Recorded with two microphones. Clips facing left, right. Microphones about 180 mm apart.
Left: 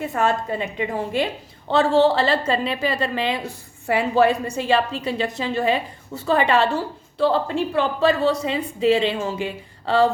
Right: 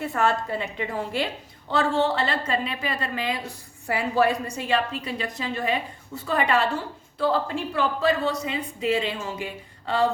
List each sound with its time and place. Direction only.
0.0 s a woman's voice: 20° left (ahead or behind)
2.0 s a woman's voice: 30° left (ahead or behind)